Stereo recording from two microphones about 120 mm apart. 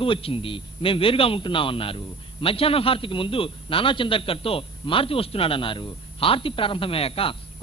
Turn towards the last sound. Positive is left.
turn(degrees=50)  # may be behind; listen again after turning